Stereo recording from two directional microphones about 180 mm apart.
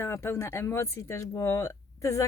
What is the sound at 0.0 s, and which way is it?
Speech, 15° left (ahead or behind).